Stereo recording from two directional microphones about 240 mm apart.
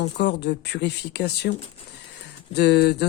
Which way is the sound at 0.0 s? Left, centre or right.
Left.